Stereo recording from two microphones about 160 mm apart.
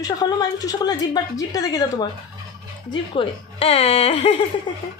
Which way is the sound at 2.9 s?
35° left (ahead or behind).